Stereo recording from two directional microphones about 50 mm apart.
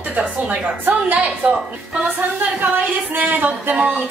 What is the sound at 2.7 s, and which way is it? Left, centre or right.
Speech, right.